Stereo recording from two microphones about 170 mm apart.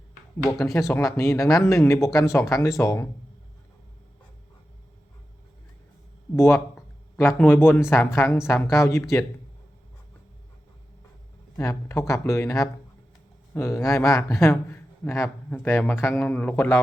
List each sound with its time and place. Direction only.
0.6 s a man's voice: 20° left (ahead or behind)
6.3 s a man's voice: 15° left (ahead or behind)
11.5 s a man's voice: 15° left (ahead or behind)